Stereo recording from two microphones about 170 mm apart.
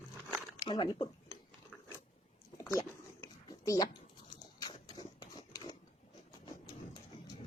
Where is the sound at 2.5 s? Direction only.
20° left (ahead or behind).